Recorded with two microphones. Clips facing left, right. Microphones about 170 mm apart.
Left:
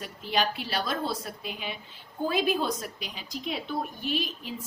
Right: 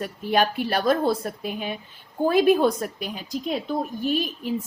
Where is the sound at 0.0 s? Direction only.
50° right (ahead or behind).